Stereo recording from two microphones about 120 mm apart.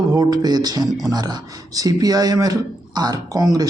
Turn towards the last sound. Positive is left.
turn(degrees=-30)  # may be behind; listen again after turning